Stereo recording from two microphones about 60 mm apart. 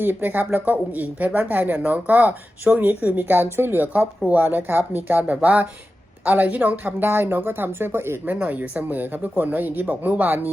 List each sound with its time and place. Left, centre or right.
0.0 s speech: right
5.3 s speech: right
8.3 s speech: right